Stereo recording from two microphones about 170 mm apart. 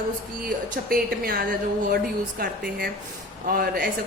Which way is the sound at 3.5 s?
60° right (ahead or behind).